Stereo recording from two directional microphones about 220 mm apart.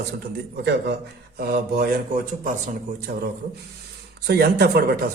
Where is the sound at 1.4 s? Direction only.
45° right (ahead or behind).